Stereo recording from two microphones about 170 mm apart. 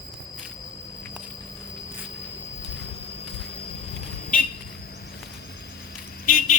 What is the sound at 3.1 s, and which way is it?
Vehicle, 35° left (ahead or behind).